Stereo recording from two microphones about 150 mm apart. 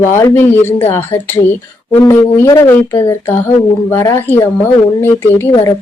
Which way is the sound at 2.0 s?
20° left (ahead or behind).